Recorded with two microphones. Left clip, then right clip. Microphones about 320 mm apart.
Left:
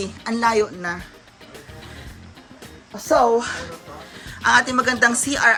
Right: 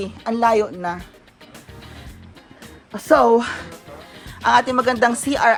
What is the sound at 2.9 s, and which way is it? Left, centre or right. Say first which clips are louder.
Speech: right 3 dB; right.